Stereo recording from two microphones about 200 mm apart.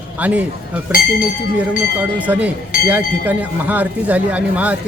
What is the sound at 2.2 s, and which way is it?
Speech, 5° right (ahead or behind).